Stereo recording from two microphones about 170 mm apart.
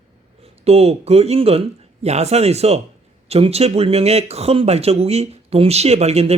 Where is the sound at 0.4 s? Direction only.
35° right (ahead or behind).